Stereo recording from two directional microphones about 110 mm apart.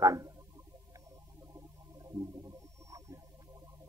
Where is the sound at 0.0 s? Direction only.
30° right (ahead or behind).